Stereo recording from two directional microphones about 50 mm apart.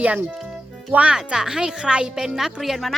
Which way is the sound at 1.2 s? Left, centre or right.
Centre.